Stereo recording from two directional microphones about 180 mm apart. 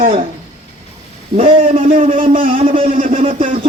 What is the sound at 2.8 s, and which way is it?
Speech, 50° right (ahead or behind).